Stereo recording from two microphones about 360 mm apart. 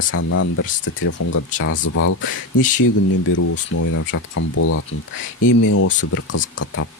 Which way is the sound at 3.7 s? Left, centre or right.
Left.